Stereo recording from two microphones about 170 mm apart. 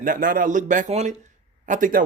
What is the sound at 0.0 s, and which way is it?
Speech, 50° right (ahead or behind).